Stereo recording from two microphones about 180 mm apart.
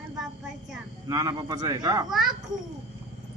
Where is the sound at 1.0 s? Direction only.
20° right (ahead or behind).